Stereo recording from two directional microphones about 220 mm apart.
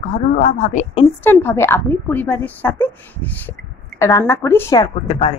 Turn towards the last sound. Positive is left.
turn(degrees=25)  # may be behind; listen again after turning